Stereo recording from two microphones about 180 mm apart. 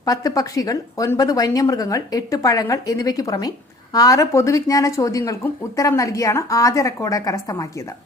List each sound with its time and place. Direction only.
0.0 s speech: 20° left (ahead or behind)